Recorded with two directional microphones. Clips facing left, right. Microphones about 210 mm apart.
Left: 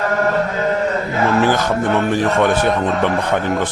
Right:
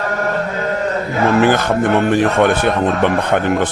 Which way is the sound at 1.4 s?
60° right (ahead or behind).